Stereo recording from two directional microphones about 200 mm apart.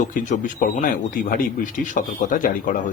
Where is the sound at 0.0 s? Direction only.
40° left (ahead or behind).